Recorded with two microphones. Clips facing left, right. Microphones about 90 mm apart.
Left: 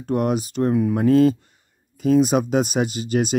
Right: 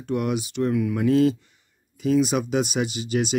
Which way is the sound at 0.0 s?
40° left (ahead or behind).